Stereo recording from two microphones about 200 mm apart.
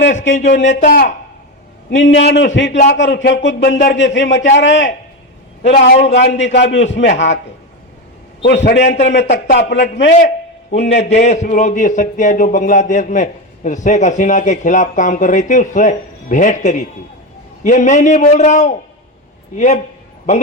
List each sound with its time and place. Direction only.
0.1 s speech: 40° left (ahead or behind)
2.0 s a man's voice: 65° left (ahead or behind)
8.4 s a man's voice: 60° left (ahead or behind)
10.2 s a sound: 35° left (ahead or behind)
11.1 s speech: 35° left (ahead or behind)